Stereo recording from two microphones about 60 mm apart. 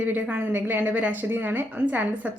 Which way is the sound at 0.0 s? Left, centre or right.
Right.